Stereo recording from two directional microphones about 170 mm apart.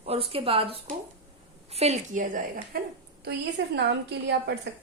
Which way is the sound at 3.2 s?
85° right.